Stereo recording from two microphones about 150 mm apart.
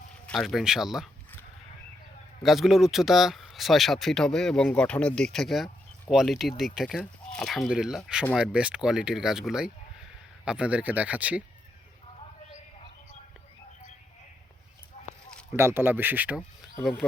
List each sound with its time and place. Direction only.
0.3 s speech: centre (ahead or behind)
2.4 s speech: centre (ahead or behind)
15.0 s a sound: 45° left (ahead or behind)
15.5 s speech: 15° right (ahead or behind)
17.0 s speech: 10° left (ahead or behind)